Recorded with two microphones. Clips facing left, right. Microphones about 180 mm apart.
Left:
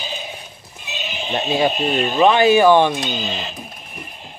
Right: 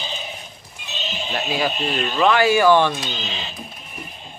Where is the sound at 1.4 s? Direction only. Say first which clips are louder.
Left 5 dB; 25° left (ahead or behind).